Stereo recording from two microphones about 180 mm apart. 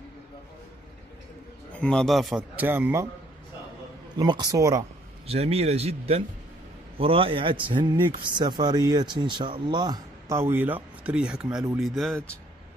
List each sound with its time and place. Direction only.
1.7 s a man's voice: 5° left (ahead or behind); by 3.1 s 15° right (ahead or behind)
4.2 s speech: 20° right (ahead or behind)
5.2 s a man's voice: 35° right (ahead or behind); by 12.2 s centre (ahead or behind)